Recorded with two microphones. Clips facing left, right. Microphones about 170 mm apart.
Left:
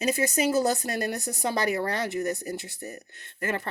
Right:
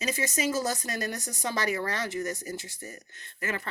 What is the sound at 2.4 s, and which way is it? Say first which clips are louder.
Speech: left 4 dB; 65° left (ahead or behind).